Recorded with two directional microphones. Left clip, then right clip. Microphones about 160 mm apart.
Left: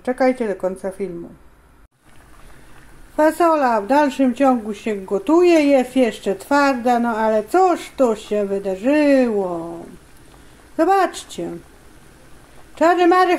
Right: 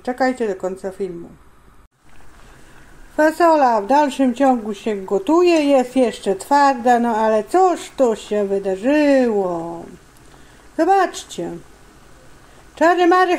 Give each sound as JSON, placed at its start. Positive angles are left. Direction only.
{"t": 0.0, "sound": "a woman's voice", "side_deg": 10}
{"t": 3.2, "sound": "speech", "side_deg": -5}
{"t": 10.8, "sound": "speech", "side_deg": 0}
{"t": 12.7, "sound": "speech", "side_deg": 0}